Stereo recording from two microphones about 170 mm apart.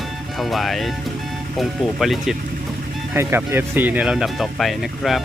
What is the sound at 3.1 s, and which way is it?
Speech, 15° right (ahead or behind).